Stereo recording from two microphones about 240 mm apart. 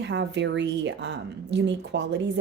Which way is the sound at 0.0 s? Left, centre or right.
Right.